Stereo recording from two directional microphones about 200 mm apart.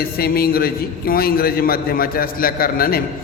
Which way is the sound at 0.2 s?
50° left (ahead or behind).